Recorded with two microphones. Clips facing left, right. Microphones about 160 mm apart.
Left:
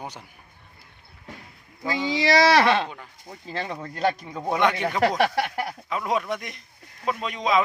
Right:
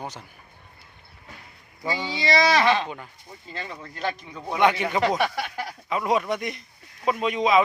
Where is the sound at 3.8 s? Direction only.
40° left (ahead or behind).